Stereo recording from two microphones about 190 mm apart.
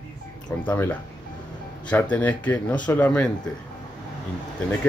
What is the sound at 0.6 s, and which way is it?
Speech, 10° left (ahead or behind).